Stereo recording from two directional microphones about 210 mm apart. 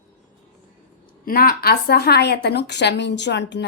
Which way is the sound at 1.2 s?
45° left (ahead or behind).